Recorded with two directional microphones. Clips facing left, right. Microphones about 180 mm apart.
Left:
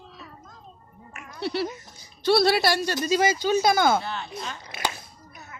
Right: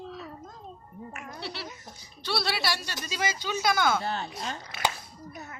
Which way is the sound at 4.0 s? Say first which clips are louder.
Right 1 dB; 40° right (ahead or behind).